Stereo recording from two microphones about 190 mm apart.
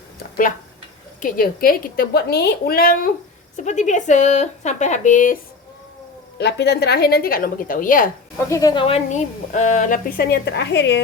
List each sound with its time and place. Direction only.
0.2 s a sound: 45° left (ahead or behind)
1.2 s a woman's voice: 50° left (ahead or behind)
3.6 s a woman's voice: 40° left (ahead or behind)
6.4 s a woman's voice: 60° left (ahead or behind)
8.4 s a woman's voice: 20° left (ahead or behind)
9.5 s a woman's voice: 40° left (ahead or behind)
10.3 s a woman's voice: 60° left (ahead or behind)